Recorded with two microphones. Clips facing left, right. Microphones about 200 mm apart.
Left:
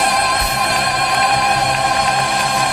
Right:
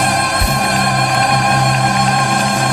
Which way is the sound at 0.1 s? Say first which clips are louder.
Right 2 dB; 50° right (ahead or behind).